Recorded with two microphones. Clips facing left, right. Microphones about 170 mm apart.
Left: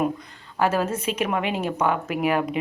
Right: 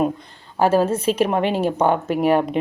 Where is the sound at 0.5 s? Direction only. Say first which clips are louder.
Right 6 dB; 30° right (ahead or behind).